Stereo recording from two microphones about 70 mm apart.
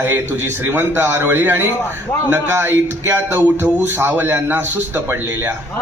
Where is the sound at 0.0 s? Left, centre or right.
Right.